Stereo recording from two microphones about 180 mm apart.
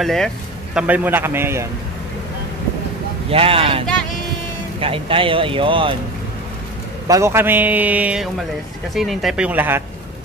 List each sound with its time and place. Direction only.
0.0 s speech: centre (ahead or behind)
0.7 s a man's voice: 10° right (ahead or behind)
3.3 s speech: 30° right (ahead or behind)
7.1 s a man's voice: 15° right (ahead or behind)